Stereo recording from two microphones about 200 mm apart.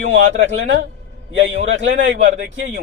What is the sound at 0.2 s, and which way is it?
A man's voice, 65° right (ahead or behind).